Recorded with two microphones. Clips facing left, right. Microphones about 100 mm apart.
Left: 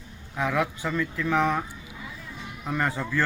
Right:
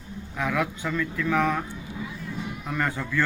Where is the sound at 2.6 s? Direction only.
15° left (ahead or behind).